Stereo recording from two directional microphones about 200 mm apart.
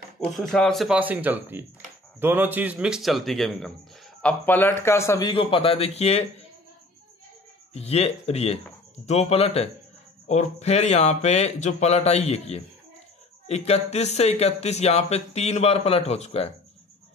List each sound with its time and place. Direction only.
0.2 s a man's voice: 5° left (ahead or behind); by 6.2 s 30° left (ahead or behind)
7.7 s speech: 30° left (ahead or behind)